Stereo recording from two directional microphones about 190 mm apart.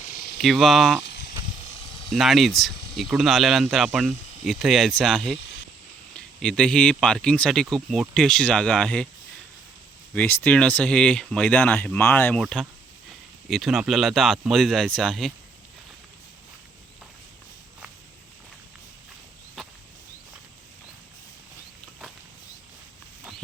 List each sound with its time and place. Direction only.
0.4 s speech: centre (ahead or behind)
1.0 s snake: 60° left (ahead or behind)
2.0 s speech: centre (ahead or behind)
10.2 s speech: 10° left (ahead or behind)
19.6 s a sound: centre (ahead or behind)